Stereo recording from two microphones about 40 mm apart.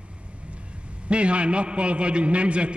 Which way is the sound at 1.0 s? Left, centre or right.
Right.